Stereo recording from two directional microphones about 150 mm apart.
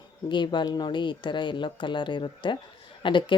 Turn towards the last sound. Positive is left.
turn(degrees=30)  # may be behind; listen again after turning